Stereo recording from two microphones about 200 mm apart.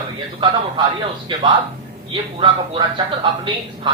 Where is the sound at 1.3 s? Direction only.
25° right (ahead or behind).